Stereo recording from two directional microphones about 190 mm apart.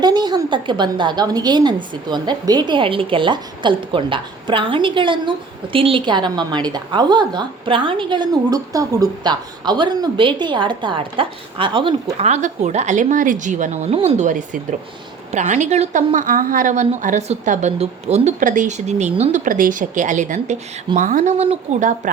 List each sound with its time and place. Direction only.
0.0 s a woman's voice: 20° right (ahead or behind); by 22.1 s 40° right (ahead or behind)